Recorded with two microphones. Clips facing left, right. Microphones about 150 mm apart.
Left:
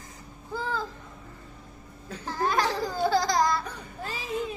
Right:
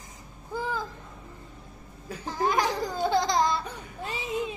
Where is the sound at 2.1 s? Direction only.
15° right (ahead or behind).